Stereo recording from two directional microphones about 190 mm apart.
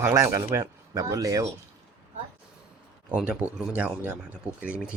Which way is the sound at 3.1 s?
5° right (ahead or behind).